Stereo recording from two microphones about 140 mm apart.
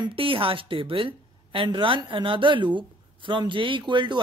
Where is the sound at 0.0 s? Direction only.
40° right (ahead or behind).